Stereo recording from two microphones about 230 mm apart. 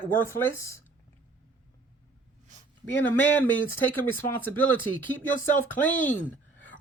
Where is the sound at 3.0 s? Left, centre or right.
Centre.